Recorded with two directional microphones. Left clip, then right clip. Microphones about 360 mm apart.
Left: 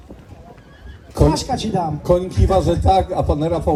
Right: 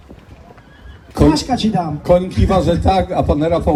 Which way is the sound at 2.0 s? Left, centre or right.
Centre.